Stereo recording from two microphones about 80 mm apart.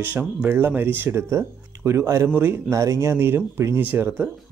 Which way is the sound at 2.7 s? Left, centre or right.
Right.